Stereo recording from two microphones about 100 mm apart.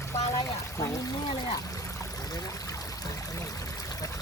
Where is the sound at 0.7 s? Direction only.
40° left (ahead or behind).